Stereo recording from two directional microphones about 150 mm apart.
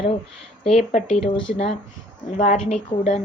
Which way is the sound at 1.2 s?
45° left (ahead or behind).